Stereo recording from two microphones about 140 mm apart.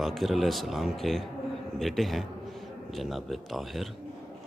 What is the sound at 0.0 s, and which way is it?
A man's voice, centre (ahead or behind).